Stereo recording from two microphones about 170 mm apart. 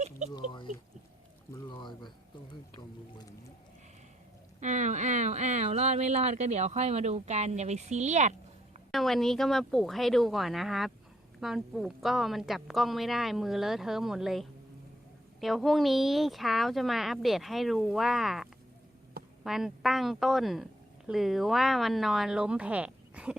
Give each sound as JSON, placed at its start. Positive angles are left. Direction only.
{"t": 0.3, "sound": "a sound", "side_deg": 25}
{"t": 4.6, "sound": "speech", "side_deg": -45}
{"t": 8.9, "sound": "a woman's voice", "side_deg": 0}
{"t": 19.5, "sound": "a woman's voice", "side_deg": 0}